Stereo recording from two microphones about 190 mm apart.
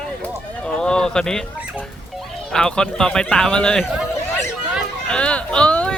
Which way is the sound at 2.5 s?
5° left (ahead or behind).